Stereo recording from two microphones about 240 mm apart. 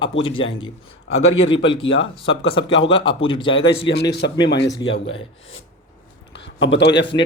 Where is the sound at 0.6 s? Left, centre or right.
Left.